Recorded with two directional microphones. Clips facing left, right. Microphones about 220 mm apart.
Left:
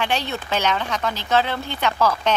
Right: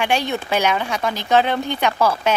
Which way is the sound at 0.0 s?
15° right (ahead or behind).